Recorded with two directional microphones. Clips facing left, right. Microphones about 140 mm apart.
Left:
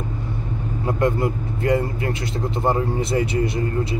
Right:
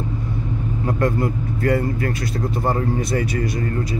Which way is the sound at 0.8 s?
20° left (ahead or behind).